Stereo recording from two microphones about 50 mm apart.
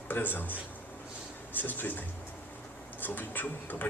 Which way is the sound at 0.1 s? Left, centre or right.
Left.